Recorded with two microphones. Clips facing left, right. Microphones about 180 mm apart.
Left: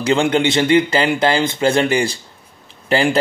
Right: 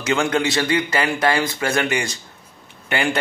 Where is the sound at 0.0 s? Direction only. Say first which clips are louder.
Left 4 dB; 30° left (ahead or behind).